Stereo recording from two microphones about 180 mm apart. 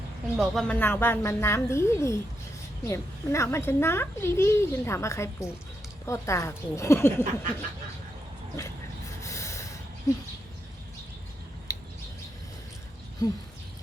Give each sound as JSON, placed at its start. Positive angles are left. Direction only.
{"t": 0.3, "sound": "a child's voice", "side_deg": 5}
{"t": 9.2, "sound": "a sound", "side_deg": 15}
{"t": 13.2, "sound": "speech", "side_deg": 20}